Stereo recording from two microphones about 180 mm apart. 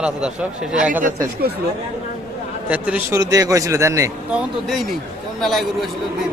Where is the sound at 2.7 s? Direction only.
10° right (ahead or behind).